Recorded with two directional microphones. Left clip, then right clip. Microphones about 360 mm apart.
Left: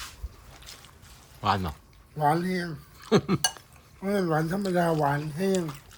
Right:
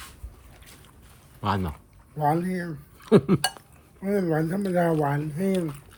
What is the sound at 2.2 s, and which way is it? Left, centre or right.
Speech, centre.